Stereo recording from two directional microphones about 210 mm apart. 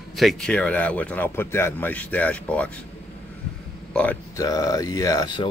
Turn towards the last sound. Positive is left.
turn(degrees=20)  # may be behind; listen again after turning